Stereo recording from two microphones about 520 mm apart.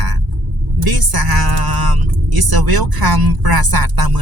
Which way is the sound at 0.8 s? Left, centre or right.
Right.